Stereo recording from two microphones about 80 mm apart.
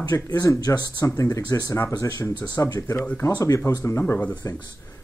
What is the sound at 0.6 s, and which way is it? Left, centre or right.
Speech, left.